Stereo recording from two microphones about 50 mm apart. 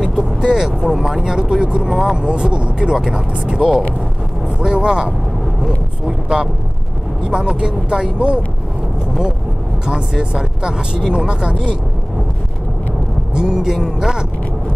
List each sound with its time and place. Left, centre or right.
0.0 s speech: centre
6.2 s speech: centre
9.8 s speech: centre
13.3 s speech: centre